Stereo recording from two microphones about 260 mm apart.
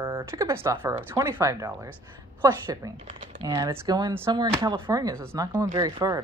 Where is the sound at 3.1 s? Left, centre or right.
Right.